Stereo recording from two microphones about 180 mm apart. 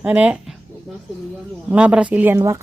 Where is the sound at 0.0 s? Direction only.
5° right (ahead or behind).